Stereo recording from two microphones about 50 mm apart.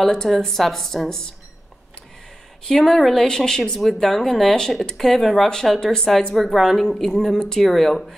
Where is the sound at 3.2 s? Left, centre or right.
Centre.